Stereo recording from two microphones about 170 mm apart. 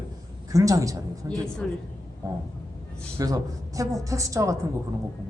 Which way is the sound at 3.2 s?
20° right (ahead or behind).